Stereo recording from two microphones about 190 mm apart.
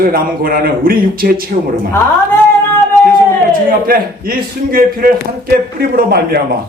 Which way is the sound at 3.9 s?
50° right (ahead or behind).